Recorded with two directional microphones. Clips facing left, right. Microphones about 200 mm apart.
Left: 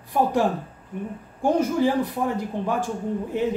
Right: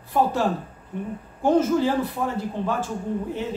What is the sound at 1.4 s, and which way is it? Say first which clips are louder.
Speech: right 1 dB; 15° left (ahead or behind).